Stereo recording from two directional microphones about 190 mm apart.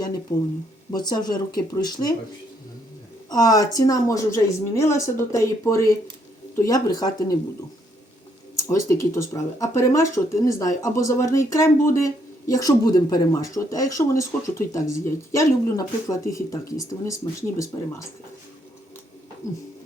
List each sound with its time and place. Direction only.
0.3 s speech: 20° left (ahead or behind)
3.2 s speech: 20° left (ahead or behind)
8.5 s speech: 15° left (ahead or behind)